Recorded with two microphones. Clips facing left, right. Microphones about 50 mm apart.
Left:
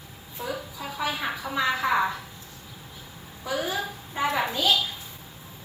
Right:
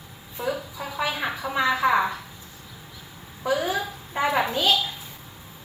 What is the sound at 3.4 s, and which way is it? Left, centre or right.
A woman's voice, right.